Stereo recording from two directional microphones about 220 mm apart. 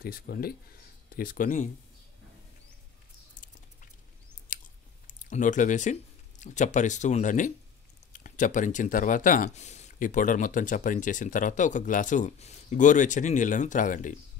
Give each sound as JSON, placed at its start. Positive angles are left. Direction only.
{"t": 0.0, "sound": "speech", "side_deg": 45}
{"t": 4.5, "sound": "chewing", "side_deg": 35}
{"t": 5.0, "sound": "speech", "side_deg": 35}